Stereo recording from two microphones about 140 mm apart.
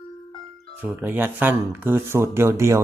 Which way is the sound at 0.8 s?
15° right (ahead or behind).